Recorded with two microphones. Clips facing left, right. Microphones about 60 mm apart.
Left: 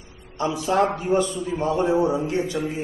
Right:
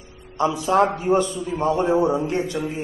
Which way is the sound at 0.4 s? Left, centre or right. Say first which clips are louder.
Right 3 dB; right.